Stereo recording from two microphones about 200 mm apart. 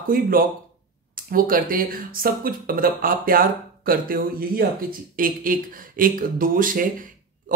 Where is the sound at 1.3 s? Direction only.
45° right (ahead or behind).